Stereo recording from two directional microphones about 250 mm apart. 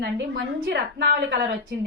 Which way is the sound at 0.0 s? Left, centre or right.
Right.